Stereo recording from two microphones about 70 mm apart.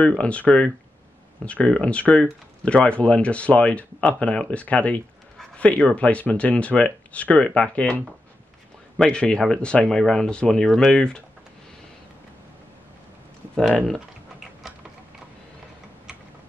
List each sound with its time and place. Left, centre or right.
0.2 s speech: centre